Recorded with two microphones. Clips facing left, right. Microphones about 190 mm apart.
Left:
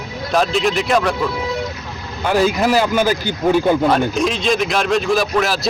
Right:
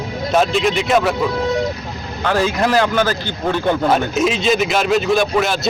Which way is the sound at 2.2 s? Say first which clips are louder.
Left 2 dB; 10° left (ahead or behind).